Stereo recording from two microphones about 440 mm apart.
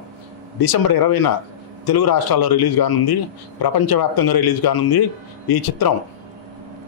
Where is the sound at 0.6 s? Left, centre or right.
Left.